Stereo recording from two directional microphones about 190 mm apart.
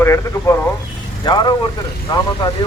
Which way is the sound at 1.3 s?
25° left (ahead or behind).